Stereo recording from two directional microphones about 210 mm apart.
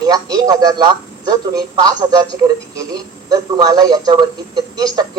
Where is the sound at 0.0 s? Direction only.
15° right (ahead or behind).